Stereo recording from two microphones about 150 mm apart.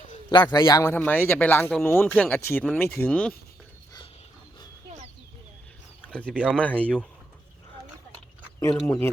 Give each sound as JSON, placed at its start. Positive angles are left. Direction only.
{"t": 0.3, "sound": "a man's voice", "side_deg": 30}
{"t": 6.1, "sound": "speech", "side_deg": 5}
{"t": 6.3, "sound": "speech", "side_deg": -10}
{"t": 6.6, "sound": "a man's voice", "side_deg": 10}
{"t": 8.5, "sound": "a man's voice", "side_deg": 15}